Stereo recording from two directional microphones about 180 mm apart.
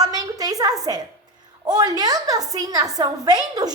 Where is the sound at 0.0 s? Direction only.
20° right (ahead or behind).